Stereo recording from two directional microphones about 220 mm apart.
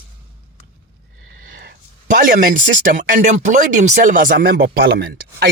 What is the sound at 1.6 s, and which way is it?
Speech, 45° right (ahead or behind).